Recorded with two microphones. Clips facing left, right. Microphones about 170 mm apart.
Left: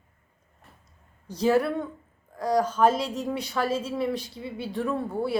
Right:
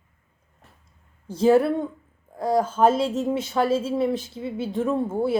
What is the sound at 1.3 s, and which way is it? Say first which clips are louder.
Speech: right 5 dB; 25° right (ahead or behind).